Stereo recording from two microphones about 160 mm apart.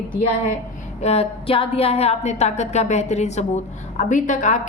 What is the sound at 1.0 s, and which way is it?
A woman's voice, 40° left (ahead or behind).